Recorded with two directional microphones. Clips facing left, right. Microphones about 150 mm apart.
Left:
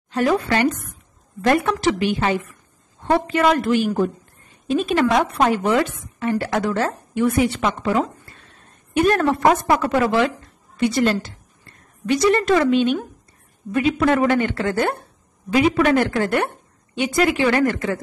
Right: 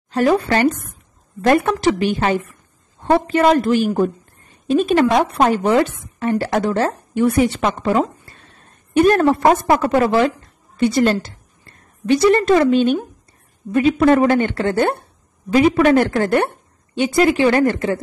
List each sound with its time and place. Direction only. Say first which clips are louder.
0.1 s a woman's voice: right 3 dB; 35° right (ahead or behind)
9.0 s a woman's voice: right 3 dB; 35° right (ahead or behind)
15.5 s a woman's voice: right 4 dB; 40° right (ahead or behind)